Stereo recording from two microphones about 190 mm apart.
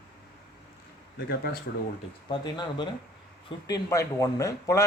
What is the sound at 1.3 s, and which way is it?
Speech, 55° left (ahead or behind).